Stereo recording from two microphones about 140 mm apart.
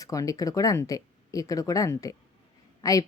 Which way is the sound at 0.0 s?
25° left (ahead or behind).